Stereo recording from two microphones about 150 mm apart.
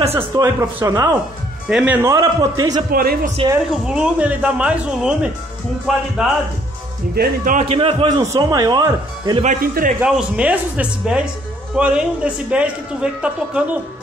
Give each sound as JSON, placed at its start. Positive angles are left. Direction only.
{"t": 0.1, "sound": "speech", "side_deg": -15}
{"t": 1.7, "sound": "speech", "side_deg": -10}
{"t": 2.9, "sound": "speech", "side_deg": -75}
{"t": 3.8, "sound": "speech", "side_deg": -5}
{"t": 7.2, "sound": "a man's voice", "side_deg": -65}
{"t": 7.6, "sound": "a man's voice", "side_deg": -40}
{"t": 8.2, "sound": "speech", "side_deg": -20}
{"t": 9.4, "sound": "a man's voice", "side_deg": -65}
{"t": 9.9, "sound": "speech", "side_deg": -5}